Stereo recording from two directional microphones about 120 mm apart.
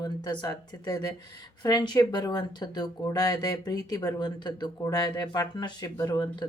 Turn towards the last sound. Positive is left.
turn(degrees=35)  # may be behind; listen again after turning